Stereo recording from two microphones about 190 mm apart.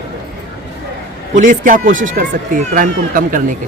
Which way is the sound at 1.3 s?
45° right (ahead or behind).